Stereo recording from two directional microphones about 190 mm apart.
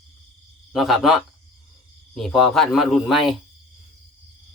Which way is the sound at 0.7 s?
Centre (ahead or behind).